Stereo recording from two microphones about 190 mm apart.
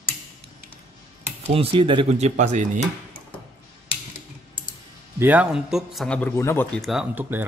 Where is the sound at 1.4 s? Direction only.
30° right (ahead or behind).